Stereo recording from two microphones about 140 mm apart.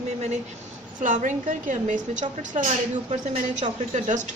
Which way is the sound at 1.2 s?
65° right (ahead or behind).